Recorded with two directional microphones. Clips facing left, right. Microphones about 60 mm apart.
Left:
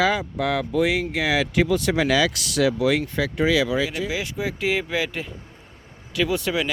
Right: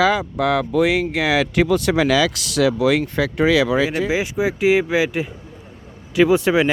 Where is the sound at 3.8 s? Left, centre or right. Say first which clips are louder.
Right 6 dB; right.